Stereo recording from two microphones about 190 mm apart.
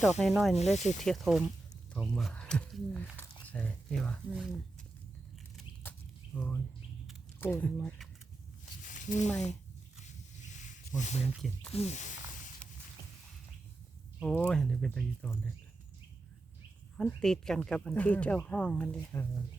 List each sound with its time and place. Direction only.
0.0 s speech: centre (ahead or behind)
0.5 s speech: 35° left (ahead or behind)
0.9 s speech: centre (ahead or behind)
1.9 s biting: centre (ahead or behind)
3.4 s speech: 10° left (ahead or behind)
6.3 s speech: 10° left (ahead or behind)
8.8 s a sound: 45° left (ahead or behind)
10.4 s a sound: 40° left (ahead or behind)
11.3 s speech: centre (ahead or behind)
11.7 s speech: 35° left (ahead or behind)
12.6 s a sound: 5° left (ahead or behind)
14.2 s speech: 5° left (ahead or behind)
17.0 s speech: 5° left (ahead or behind)